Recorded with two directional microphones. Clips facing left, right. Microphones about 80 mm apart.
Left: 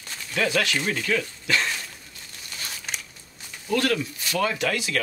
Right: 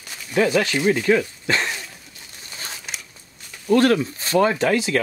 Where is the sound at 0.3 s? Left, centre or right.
Right.